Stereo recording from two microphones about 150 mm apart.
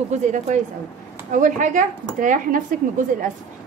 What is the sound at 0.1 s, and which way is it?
A woman's voice, 50° right (ahead or behind).